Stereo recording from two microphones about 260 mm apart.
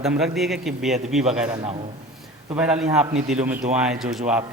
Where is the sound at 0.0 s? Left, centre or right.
Centre.